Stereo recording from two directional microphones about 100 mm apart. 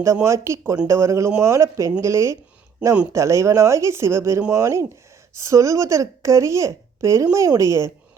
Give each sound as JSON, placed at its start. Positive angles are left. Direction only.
{"t": 0.0, "sound": "speech", "side_deg": -30}